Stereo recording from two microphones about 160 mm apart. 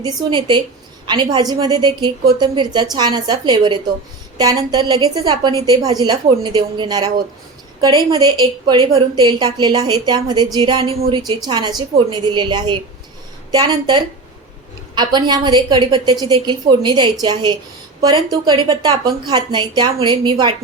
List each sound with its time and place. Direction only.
0.0 s a woman's voice: 30° right (ahead or behind)